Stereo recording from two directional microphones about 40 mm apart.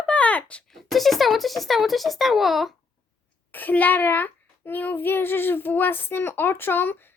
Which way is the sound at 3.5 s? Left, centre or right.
Left.